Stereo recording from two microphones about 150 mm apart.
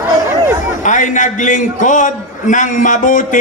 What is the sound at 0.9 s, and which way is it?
A man's voice, 55° left (ahead or behind).